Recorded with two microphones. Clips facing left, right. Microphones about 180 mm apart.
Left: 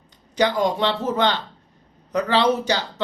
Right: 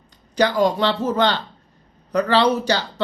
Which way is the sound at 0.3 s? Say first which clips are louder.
Right 2 dB; 20° left (ahead or behind).